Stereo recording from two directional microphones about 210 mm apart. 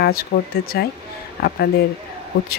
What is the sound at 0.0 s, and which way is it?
Speech, 45° left (ahead or behind).